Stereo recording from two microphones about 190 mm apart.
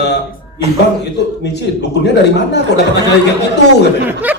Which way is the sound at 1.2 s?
65° left (ahead or behind).